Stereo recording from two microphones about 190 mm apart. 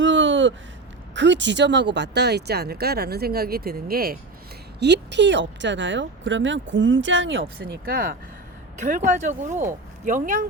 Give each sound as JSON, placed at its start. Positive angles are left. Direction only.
{"t": 0.0, "sound": "a sound", "side_deg": -80}
{"t": 1.1, "sound": "speech", "side_deg": -70}
{"t": 4.8, "sound": "speech", "side_deg": -65}
{"t": 7.6, "sound": "speech", "side_deg": -50}